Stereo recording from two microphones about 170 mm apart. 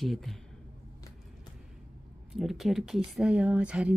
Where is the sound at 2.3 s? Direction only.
Centre (ahead or behind).